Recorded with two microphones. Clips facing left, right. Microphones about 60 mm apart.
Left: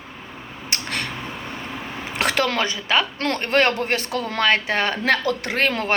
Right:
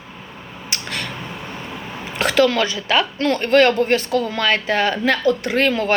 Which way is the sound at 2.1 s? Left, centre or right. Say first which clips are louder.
Right 5 dB; left.